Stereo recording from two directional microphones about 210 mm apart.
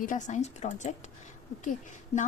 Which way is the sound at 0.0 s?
40° left (ahead or behind).